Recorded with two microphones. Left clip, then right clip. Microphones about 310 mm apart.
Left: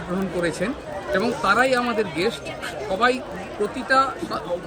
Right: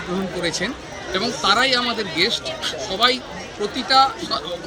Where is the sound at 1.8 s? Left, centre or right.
Centre.